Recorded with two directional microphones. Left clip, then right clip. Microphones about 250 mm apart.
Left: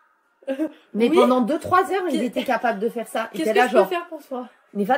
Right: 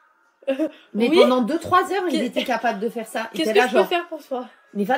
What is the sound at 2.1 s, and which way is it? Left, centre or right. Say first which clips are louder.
Speech: right 1 dB; centre.